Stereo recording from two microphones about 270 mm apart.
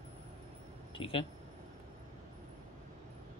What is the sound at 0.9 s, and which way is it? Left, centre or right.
Speech, centre.